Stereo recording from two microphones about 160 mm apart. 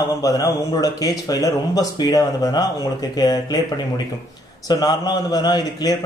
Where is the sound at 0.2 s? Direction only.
20° left (ahead or behind).